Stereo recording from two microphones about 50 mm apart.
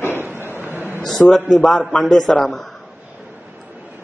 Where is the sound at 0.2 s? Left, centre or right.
Right.